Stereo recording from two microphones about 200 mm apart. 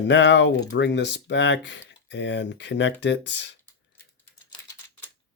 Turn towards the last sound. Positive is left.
turn(degrees=60)  # may be behind; listen again after turning